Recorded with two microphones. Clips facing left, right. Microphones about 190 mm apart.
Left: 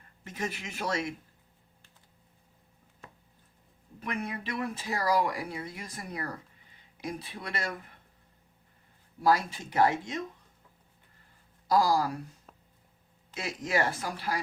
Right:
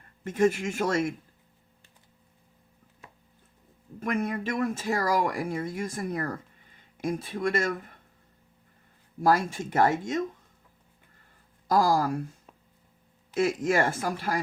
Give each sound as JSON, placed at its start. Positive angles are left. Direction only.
{"t": 0.3, "sound": "speech", "side_deg": -50}
{"t": 4.0, "sound": "speech", "side_deg": -45}
{"t": 9.2, "sound": "speech", "side_deg": -50}
{"t": 11.7, "sound": "speech", "side_deg": -50}
{"t": 13.3, "sound": "speech", "side_deg": -50}